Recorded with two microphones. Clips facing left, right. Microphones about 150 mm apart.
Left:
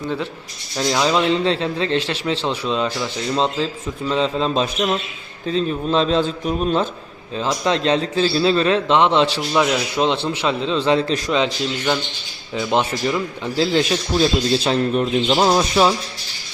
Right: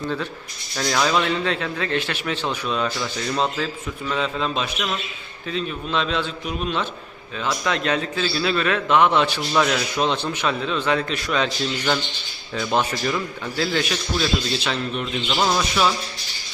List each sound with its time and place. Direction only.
0.8 s speech: 20° left (ahead or behind)
9.5 s speech: 15° left (ahead or behind)
12.5 s speech: 15° left (ahead or behind); by 16.0 s 30° left (ahead or behind)